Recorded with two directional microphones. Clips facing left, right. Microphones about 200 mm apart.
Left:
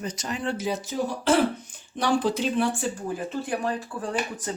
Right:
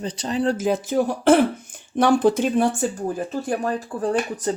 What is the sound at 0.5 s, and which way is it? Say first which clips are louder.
Speech: right 7 dB; 50° right (ahead or behind).